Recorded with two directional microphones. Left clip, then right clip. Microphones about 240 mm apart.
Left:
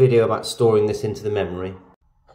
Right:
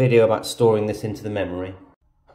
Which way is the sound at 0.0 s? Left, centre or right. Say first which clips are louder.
Even; centre.